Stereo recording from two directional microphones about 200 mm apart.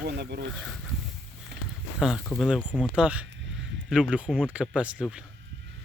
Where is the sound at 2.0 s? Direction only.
Centre (ahead or behind).